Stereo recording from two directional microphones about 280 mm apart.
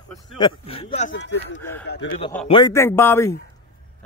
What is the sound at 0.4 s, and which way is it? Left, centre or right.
Speech, centre.